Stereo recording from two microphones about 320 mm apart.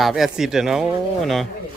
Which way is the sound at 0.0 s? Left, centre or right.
Centre.